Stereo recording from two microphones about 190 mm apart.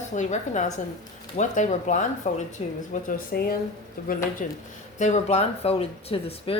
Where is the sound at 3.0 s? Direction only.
50° left (ahead or behind).